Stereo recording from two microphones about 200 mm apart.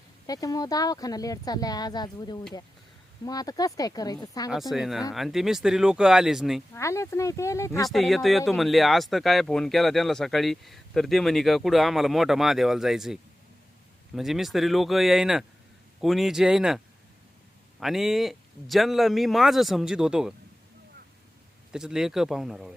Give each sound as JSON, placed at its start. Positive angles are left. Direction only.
{"t": 0.3, "sound": "speech", "side_deg": 20}
{"t": 4.7, "sound": "speech", "side_deg": 0}
{"t": 6.7, "sound": "speech", "side_deg": 15}
{"t": 7.9, "sound": "speech", "side_deg": 0}
{"t": 14.2, "sound": "speech", "side_deg": 0}
{"t": 21.7, "sound": "speech", "side_deg": -5}